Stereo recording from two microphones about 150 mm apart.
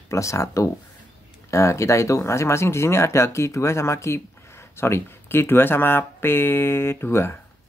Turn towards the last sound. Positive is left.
turn(degrees=15)  # may be behind; listen again after turning